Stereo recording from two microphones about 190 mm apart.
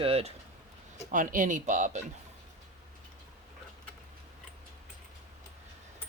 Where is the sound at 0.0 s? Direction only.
30° right (ahead or behind).